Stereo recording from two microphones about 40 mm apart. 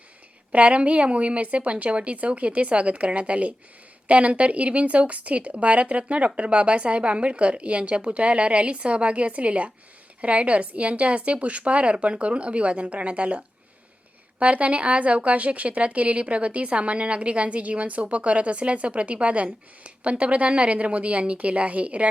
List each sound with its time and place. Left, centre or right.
0.5 s speech: right